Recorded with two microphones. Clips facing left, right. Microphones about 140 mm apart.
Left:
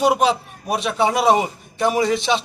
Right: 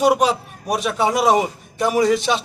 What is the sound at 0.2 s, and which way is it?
A man's voice, 10° right (ahead or behind).